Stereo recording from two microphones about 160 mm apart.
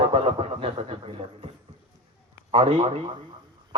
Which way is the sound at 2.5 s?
35° right (ahead or behind).